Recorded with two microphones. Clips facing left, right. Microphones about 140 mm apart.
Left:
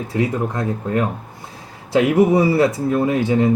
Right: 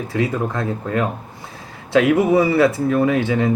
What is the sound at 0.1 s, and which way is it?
Speech, 25° left (ahead or behind).